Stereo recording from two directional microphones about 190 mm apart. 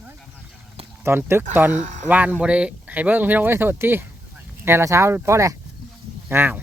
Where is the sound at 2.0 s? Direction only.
10° right (ahead or behind).